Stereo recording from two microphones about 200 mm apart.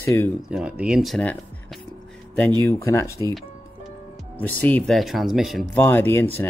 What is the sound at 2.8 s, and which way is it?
Speech, 15° left (ahead or behind).